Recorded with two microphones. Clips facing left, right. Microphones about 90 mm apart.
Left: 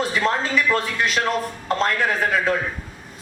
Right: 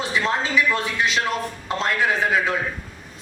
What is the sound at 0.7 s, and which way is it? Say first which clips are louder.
Speech: left 1 dB; 50° left (ahead or behind).